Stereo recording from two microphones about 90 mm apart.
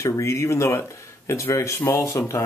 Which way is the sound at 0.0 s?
30° left (ahead or behind).